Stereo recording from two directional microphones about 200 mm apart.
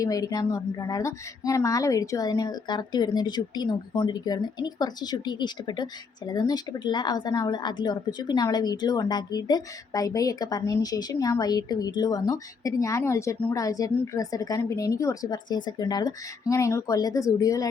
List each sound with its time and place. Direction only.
0.0 s a woman's voice: 15° left (ahead or behind)